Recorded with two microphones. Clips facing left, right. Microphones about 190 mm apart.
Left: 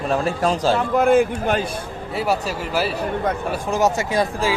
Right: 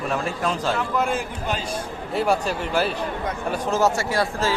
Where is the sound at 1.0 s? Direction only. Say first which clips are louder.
Left 9 dB; 55° left (ahead or behind).